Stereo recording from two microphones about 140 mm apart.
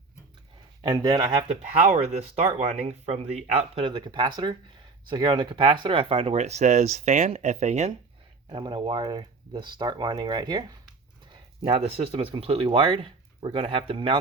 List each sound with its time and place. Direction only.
0.8 s speech: 30° right (ahead or behind)
1.5 s speech: 50° right (ahead or behind)
8.4 s speech: 35° right (ahead or behind)
11.6 s speech: 45° right (ahead or behind)